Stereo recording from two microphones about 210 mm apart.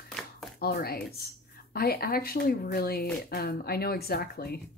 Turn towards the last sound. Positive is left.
turn(degrees=50)  # may be behind; listen again after turning